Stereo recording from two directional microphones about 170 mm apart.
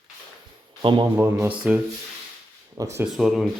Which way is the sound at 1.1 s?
15° right (ahead or behind).